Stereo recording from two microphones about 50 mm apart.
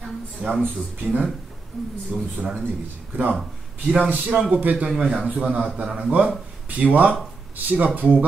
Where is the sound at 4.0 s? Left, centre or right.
Right.